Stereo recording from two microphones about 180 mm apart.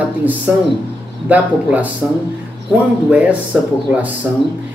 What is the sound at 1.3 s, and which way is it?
Speech, 10° right (ahead or behind).